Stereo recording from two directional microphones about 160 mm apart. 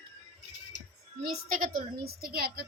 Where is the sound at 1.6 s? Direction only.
65° right (ahead or behind).